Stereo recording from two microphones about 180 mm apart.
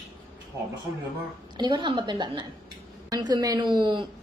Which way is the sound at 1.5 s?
25° right (ahead or behind).